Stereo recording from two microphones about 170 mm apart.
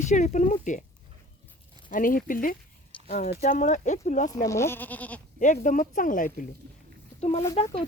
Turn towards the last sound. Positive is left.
turn(degrees=35)  # may be behind; listen again after turning